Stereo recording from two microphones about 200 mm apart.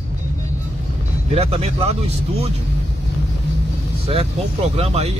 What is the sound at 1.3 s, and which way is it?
Speech, 30° right (ahead or behind).